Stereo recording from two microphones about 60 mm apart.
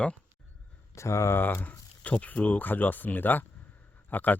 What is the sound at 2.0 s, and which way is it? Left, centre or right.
Speech, left.